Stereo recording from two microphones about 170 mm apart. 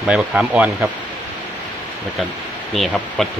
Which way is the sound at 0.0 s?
5° right (ahead or behind).